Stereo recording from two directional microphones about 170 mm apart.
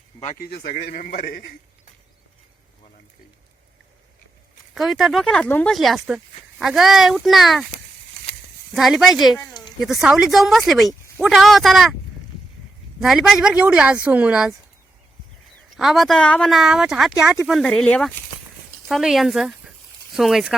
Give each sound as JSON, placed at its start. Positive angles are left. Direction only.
{"t": 0.3, "sound": "a man's voice", "side_deg": 65}
{"t": 4.7, "sound": "speech", "side_deg": 0}
{"t": 8.7, "sound": "speech", "side_deg": 0}
{"t": 13.0, "sound": "speech", "side_deg": 0}
{"t": 15.7, "sound": "speech", "side_deg": 0}